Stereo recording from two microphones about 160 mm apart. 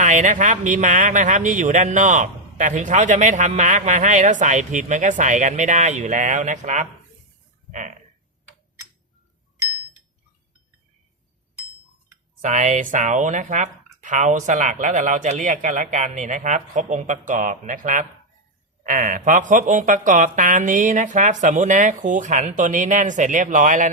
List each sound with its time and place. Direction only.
0.0 s speech: 50° right (ahead or behind)
12.4 s speech: 50° right (ahead or behind)